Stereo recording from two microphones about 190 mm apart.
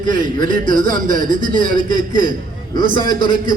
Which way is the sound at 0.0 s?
45° right (ahead or behind).